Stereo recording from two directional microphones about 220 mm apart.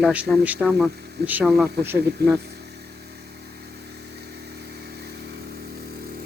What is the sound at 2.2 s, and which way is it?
Speech, 50° right (ahead or behind).